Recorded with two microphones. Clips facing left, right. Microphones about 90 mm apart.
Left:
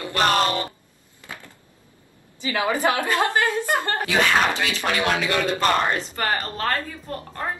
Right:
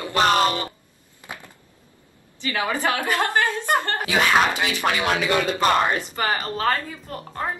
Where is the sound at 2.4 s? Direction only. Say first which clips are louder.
Left 2 dB; 20° left (ahead or behind).